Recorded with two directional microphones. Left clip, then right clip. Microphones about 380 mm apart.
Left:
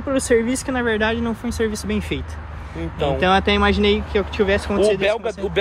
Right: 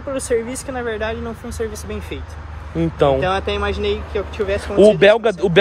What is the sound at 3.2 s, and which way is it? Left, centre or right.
Speech, centre.